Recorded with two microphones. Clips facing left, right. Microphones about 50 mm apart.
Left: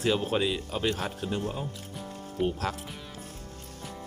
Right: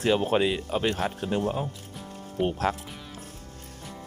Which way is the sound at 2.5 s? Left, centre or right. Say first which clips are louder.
Right 4 dB; right.